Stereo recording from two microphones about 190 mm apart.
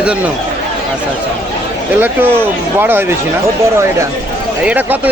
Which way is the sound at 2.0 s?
10° right (ahead or behind).